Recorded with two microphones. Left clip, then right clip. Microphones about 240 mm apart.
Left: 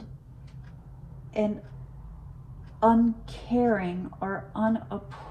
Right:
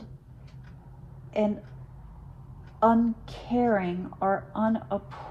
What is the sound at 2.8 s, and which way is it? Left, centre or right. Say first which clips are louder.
A woman's voice: even; right.